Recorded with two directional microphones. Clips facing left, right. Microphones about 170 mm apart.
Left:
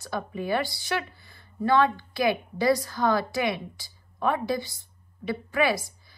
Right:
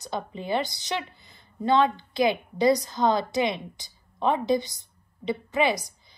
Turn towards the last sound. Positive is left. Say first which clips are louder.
# even
turn(degrees=-20)  # may be behind; listen again after turning